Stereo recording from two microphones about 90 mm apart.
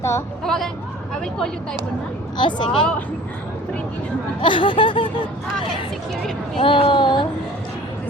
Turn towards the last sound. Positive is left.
turn(degrees=60)  # may be behind; listen again after turning